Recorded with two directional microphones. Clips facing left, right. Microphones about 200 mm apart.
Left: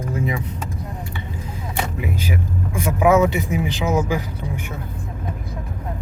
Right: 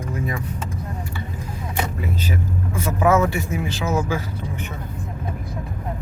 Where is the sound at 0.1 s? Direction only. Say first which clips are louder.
Left 3 dB; 20° left (ahead or behind).